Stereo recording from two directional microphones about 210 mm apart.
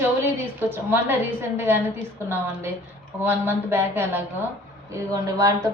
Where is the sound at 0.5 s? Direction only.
10° right (ahead or behind).